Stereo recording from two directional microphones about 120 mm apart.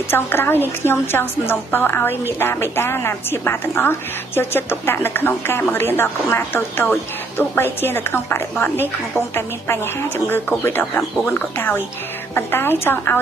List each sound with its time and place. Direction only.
0.1 s a woman's voice: 20° left (ahead or behind)